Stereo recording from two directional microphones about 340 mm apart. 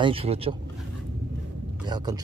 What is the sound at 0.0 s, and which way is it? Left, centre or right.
Speech, centre.